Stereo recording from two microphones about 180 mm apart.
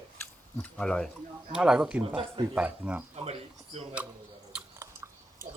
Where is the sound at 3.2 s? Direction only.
35° right (ahead or behind).